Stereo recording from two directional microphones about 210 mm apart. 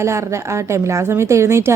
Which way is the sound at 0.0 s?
15° right (ahead or behind).